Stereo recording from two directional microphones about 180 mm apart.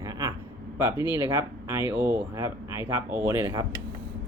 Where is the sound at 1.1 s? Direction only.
15° right (ahead or behind).